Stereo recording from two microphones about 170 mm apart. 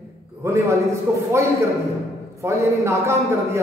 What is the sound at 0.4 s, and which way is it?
Speech, 15° right (ahead or behind).